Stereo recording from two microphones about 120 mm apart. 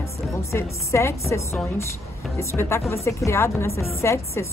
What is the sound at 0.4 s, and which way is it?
Speech, 25° left (ahead or behind).